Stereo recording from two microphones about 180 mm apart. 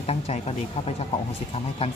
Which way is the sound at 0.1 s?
35° left (ahead or behind).